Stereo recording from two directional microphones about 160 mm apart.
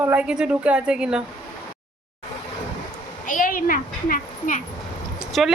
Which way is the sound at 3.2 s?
55° left (ahead or behind).